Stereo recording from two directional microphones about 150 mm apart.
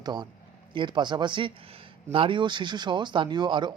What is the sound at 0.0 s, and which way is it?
Speech, 30° right (ahead or behind).